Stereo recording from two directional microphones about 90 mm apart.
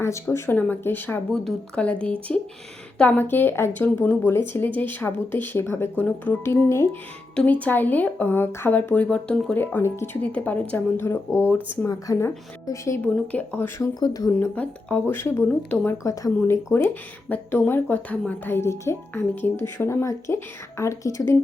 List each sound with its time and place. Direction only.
0.0 s speech: 30° left (ahead or behind)
0.5 s a woman's voice: 20° left (ahead or behind)
1.3 s a woman's voice: 10° left (ahead or behind)
4.2 s a woman's voice: 25° left (ahead or behind)
6.0 s a woman's voice: 15° left (ahead or behind)
10.3 s speech: 15° left (ahead or behind)
11.0 s a woman's voice: 30° left (ahead or behind)
11.9 s speech: 35° left (ahead or behind)
13.0 s speech: 20° left (ahead or behind); by 14.3 s 45° left (ahead or behind)
14.5 s speech: 15° left (ahead or behind)
15.0 s a woman's voice: 30° left (ahead or behind)
15.4 s a woman's voice: 20° left (ahead or behind); by 21.3 s 35° left (ahead or behind)